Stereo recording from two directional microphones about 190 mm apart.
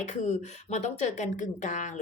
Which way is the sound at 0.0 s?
40° left (ahead or behind).